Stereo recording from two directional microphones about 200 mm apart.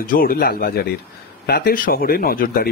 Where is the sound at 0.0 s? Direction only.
45° left (ahead or behind).